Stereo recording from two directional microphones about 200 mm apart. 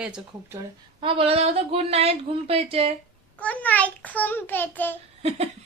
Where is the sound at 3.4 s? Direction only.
5° left (ahead or behind).